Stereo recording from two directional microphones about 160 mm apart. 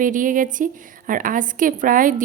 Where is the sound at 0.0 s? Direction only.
55° right (ahead or behind).